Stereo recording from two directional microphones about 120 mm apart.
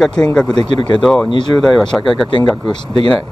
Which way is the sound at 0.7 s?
45° left (ahead or behind).